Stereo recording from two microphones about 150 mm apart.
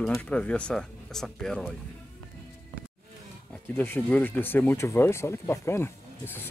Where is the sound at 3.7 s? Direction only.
15° left (ahead or behind).